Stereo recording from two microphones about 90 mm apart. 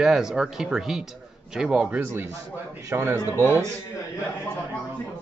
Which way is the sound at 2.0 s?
25° right (ahead or behind).